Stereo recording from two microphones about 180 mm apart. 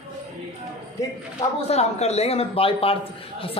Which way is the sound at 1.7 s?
35° left (ahead or behind).